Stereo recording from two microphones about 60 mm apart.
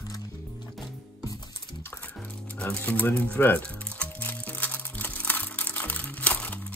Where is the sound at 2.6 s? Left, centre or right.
Left.